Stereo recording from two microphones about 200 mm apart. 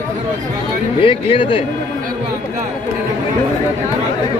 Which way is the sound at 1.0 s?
25° left (ahead or behind).